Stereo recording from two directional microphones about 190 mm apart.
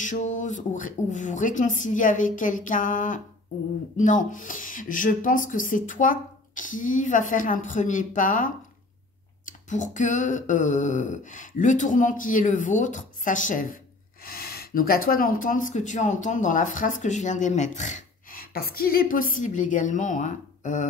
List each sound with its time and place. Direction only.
0.0 s speech: 40° left (ahead or behind)
9.5 s a sound: 40° left (ahead or behind)
14.2 s speech: 50° left (ahead or behind)